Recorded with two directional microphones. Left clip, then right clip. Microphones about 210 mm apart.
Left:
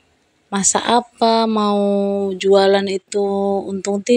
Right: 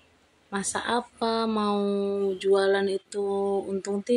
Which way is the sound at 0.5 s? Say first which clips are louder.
Left 12 dB; 35° left (ahead or behind).